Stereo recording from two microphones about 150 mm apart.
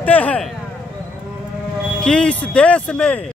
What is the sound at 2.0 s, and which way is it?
Speech, 5° left (ahead or behind).